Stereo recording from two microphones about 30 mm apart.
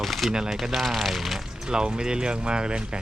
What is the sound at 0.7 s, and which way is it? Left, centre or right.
Speech, centre.